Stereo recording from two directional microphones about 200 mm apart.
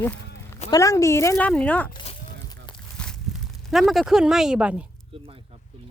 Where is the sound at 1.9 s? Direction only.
25° left (ahead or behind).